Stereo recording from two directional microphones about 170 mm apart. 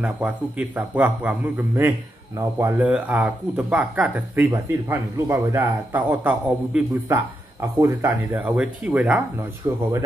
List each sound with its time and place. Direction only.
0.0 s speech: 10° right (ahead or behind)
9.6 s speech: 20° right (ahead or behind)